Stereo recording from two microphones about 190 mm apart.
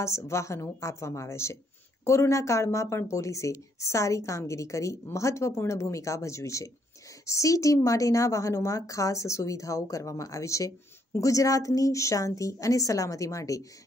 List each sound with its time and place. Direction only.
0.0 s speech: 15° left (ahead or behind)